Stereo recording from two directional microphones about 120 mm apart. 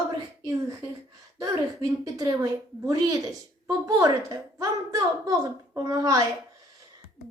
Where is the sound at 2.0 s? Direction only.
30° right (ahead or behind).